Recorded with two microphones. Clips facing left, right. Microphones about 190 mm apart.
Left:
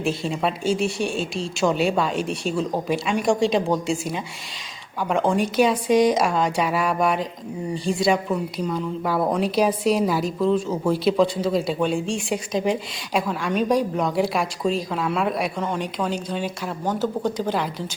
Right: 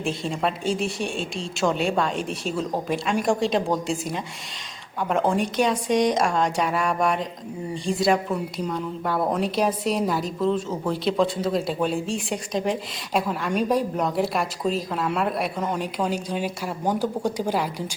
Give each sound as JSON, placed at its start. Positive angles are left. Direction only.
{"t": 0.0, "sound": "a woman's voice", "side_deg": 0}